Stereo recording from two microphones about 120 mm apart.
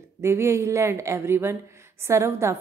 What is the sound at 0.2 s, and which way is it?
A woman's voice, 25° right (ahead or behind).